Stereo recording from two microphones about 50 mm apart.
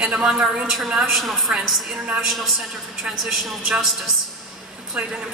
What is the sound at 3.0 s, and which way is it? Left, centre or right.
Speech, centre.